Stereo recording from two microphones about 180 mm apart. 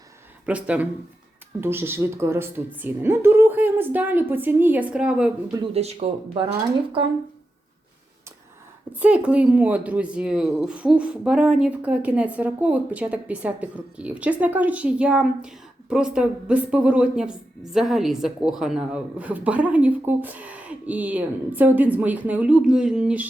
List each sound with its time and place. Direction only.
0.4 s speech: 5° right (ahead or behind)
5.7 s speech: 35° right (ahead or behind)
9.0 s speech: 5° right (ahead or behind)